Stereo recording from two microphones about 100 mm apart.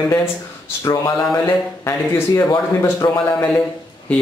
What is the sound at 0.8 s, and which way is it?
Speech, 35° left (ahead or behind).